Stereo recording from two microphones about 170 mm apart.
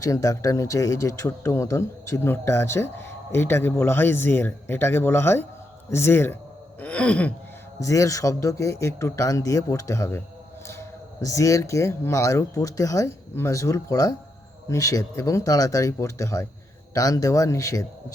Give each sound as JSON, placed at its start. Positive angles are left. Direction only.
{"t": 0.0, "sound": "speech", "side_deg": 20}
{"t": 6.7, "sound": "groan", "side_deg": 5}
{"t": 7.8, "sound": "speech", "side_deg": 20}